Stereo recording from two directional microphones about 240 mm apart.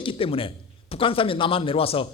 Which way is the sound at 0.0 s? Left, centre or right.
Left.